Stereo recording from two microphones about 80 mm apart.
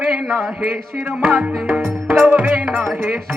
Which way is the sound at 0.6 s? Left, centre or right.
Centre.